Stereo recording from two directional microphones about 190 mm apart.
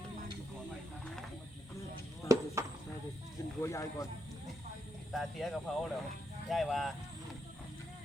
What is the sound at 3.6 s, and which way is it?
Speech, 15° left (ahead or behind).